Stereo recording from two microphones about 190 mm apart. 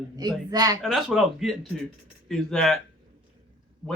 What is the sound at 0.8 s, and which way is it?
Speech, centre (ahead or behind).